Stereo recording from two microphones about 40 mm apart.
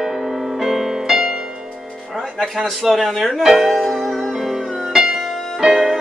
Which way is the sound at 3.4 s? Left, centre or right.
Centre.